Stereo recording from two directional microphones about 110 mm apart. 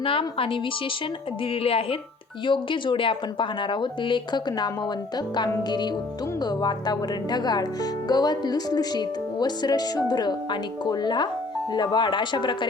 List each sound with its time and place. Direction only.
0.0 s a woman's voice: 55° left (ahead or behind)
1.6 s a woman's voice: 60° left (ahead or behind)
2.5 s speech: 45° left (ahead or behind)
6.4 s speech: 40° left (ahead or behind)